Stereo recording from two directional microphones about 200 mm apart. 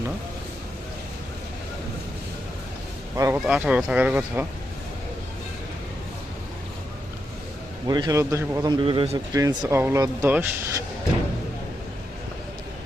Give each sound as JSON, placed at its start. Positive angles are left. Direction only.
{"t": 3.2, "sound": "a man's voice", "side_deg": -10}
{"t": 7.9, "sound": "a man's voice", "side_deg": -20}